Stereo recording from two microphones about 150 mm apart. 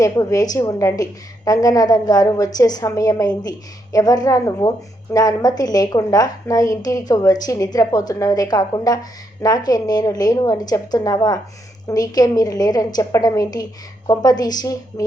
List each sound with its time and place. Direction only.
0.0 s a woman's voice: 20° left (ahead or behind)